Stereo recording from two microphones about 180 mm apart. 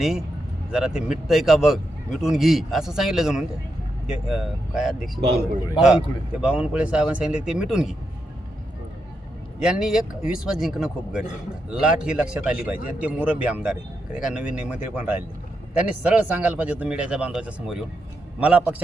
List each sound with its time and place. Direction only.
0.0 s speech: centre (ahead or behind)
5.4 s a man's voice: 15° left (ahead or behind)
6.4 s speech: 5° right (ahead or behind)
9.6 s a man's voice: 5° right (ahead or behind)